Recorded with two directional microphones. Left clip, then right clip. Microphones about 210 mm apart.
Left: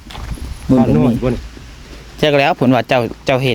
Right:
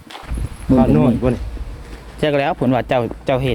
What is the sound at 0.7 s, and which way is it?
Speech, 10° left (ahead or behind).